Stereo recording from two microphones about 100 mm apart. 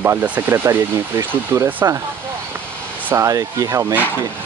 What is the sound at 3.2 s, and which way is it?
Speech, 30° right (ahead or behind).